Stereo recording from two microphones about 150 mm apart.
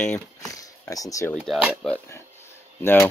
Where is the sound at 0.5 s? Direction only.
25° left (ahead or behind).